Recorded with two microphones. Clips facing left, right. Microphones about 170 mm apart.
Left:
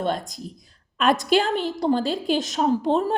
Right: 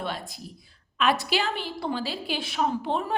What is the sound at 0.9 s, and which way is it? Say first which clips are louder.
A woman's voice: left 5 dB; 45° left (ahead or behind).